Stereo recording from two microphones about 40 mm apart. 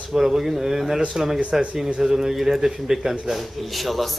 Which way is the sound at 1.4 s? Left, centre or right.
Right.